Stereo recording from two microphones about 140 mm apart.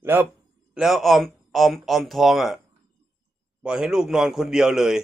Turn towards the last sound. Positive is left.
turn(degrees=-5)  # may be behind; listen again after turning